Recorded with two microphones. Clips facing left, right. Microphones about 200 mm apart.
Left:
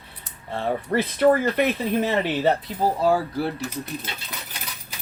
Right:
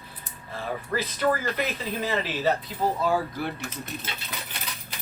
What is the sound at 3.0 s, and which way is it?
Speech, 35° left (ahead or behind).